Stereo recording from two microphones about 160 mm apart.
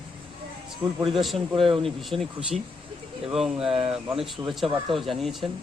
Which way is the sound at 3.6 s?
40° right (ahead or behind).